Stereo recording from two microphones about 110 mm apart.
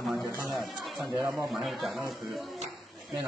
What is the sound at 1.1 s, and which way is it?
Speech, 20° right (ahead or behind).